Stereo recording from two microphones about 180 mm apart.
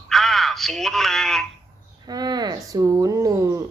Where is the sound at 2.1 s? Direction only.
20° right (ahead or behind).